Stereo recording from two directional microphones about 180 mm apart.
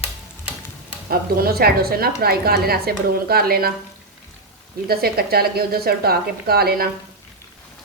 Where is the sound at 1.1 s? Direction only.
60° right (ahead or behind).